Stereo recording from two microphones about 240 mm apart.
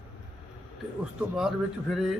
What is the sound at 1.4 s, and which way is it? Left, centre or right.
Speech, centre.